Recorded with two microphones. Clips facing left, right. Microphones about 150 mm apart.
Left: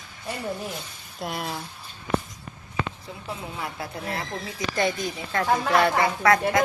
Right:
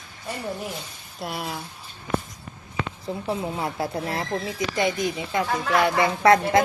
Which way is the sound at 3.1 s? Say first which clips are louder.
Right 8 dB; 35° right (ahead or behind).